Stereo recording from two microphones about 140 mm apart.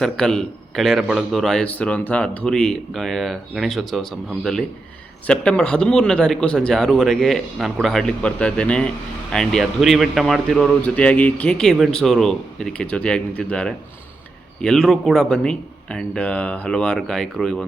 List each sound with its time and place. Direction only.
0.0 s a man's voice: 5° left (ahead or behind)